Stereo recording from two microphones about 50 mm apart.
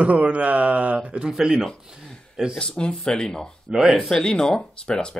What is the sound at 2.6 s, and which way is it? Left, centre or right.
Speech, centre.